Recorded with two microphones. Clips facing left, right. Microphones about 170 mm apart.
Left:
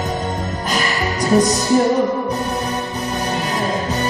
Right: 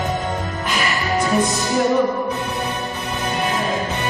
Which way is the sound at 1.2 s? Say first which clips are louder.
Left 6 dB; 40° left (ahead or behind).